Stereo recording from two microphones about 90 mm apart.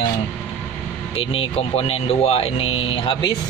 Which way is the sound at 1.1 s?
90° left.